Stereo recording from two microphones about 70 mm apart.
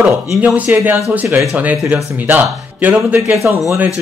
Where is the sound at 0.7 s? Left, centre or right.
Right.